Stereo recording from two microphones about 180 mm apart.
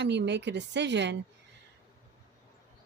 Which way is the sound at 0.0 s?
75° right (ahead or behind).